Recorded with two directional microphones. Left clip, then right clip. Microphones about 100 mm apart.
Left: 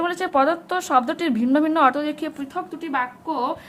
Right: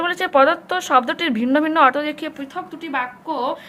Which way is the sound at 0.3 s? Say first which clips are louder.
Right 5 dB; 20° left (ahead or behind).